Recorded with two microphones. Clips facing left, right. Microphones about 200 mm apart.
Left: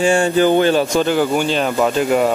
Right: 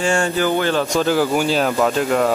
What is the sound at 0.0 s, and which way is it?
Speech, 15° left (ahead or behind).